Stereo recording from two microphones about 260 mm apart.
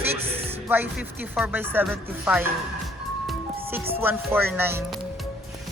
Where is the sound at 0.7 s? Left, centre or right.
Centre.